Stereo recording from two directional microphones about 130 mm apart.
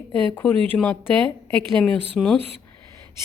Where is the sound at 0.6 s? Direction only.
15° left (ahead or behind).